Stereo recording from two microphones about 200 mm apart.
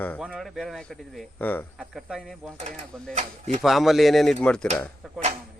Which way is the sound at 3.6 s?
Centre (ahead or behind).